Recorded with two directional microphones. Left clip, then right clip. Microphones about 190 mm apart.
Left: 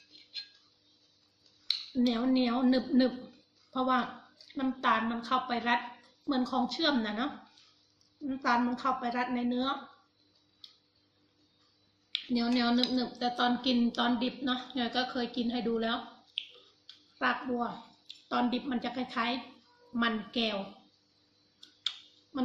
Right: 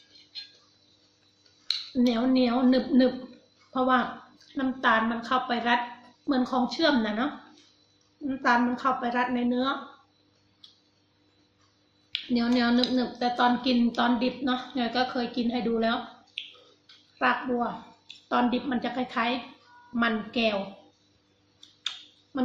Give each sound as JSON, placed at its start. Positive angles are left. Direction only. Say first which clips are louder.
{"t": 1.6, "sound": "speech", "louder": "right 4 dB", "side_deg": 0}
{"t": 12.1, "sound": "speech", "louder": "right 4 dB", "side_deg": 0}
{"t": 16.8, "sound": "a sound", "louder": "right 5 dB", "side_deg": 5}
{"t": 18.3, "sound": "speech", "louder": "right 6 dB", "side_deg": 0}
{"t": 21.8, "sound": "computer keyboard", "louder": "right 2 dB", "side_deg": 0}